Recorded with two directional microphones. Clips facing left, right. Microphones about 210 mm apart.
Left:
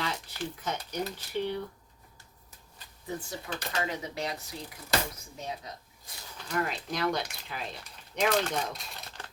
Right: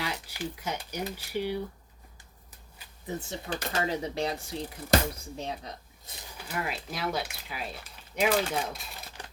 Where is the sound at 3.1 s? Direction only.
20° right (ahead or behind).